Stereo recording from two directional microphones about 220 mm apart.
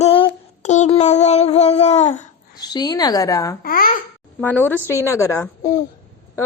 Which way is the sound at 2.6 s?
20° left (ahead or behind).